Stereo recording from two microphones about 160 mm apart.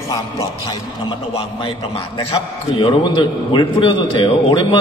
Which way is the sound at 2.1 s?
30° left (ahead or behind).